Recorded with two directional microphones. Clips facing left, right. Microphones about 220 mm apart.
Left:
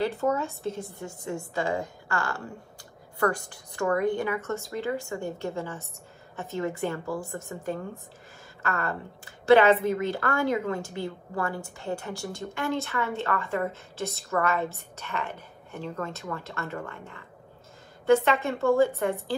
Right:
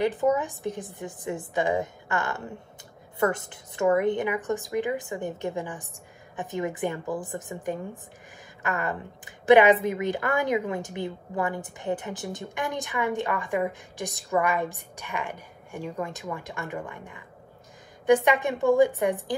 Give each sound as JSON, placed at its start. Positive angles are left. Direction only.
{"t": 0.0, "sound": "a woman's voice", "side_deg": -20}